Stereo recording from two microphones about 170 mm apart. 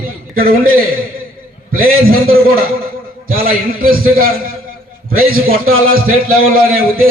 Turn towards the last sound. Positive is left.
turn(degrees=-60)  # may be behind; listen again after turning